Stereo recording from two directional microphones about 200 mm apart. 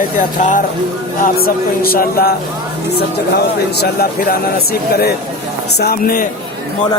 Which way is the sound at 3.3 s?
50° left (ahead or behind).